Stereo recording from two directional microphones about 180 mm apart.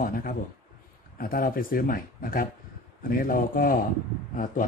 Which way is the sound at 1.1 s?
55° left (ahead or behind).